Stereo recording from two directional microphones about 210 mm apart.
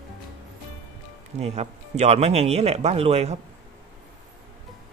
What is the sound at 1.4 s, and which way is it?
Speech, 30° right (ahead or behind).